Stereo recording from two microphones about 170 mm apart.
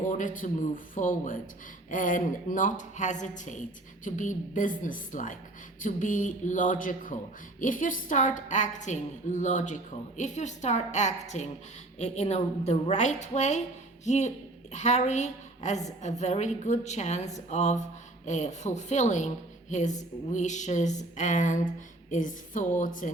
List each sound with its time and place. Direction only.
0.1 s a woman's voice: 50° left (ahead or behind)